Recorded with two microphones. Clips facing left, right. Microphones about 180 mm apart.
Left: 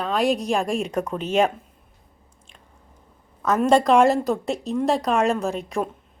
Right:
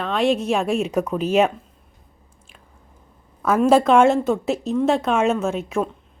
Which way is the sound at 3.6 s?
5° right (ahead or behind).